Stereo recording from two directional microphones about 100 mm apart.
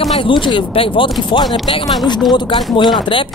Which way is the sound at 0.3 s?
55° left (ahead or behind).